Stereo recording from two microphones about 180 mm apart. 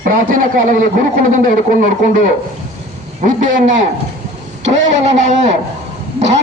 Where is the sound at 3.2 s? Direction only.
45° right (ahead or behind).